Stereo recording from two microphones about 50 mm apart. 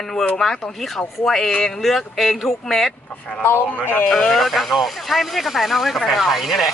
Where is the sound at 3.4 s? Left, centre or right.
Left.